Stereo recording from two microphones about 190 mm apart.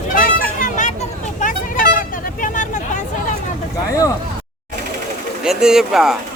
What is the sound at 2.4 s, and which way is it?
Vehicle, 40° left (ahead or behind).